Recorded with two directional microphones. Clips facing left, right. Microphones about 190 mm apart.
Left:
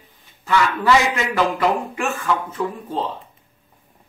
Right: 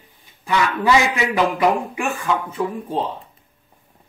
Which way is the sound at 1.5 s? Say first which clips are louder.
Right 2 dB; 15° right (ahead or behind).